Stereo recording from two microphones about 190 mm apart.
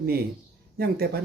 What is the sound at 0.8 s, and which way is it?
Speech, 55° right (ahead or behind).